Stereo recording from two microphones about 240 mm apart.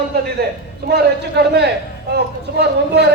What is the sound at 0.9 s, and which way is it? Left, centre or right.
A man's voice, right.